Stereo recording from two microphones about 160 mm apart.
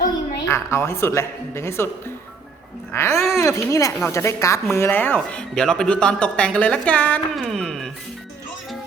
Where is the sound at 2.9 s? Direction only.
15° left (ahead or behind).